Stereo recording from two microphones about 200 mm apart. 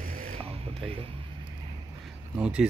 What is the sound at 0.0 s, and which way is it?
Music, 45° right (ahead or behind).